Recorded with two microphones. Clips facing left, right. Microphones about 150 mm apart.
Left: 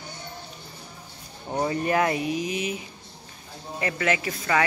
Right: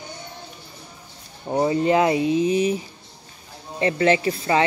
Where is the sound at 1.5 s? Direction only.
20° right (ahead or behind).